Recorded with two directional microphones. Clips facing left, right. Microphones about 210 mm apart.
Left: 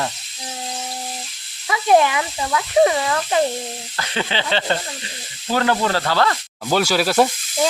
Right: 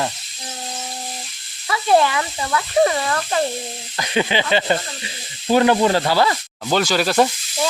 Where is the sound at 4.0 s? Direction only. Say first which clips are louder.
Right 5 dB; 15° right (ahead or behind).